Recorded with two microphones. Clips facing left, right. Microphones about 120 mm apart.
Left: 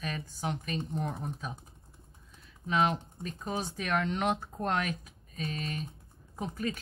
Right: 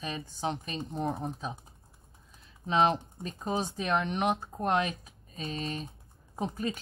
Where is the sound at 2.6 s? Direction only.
25° right (ahead or behind).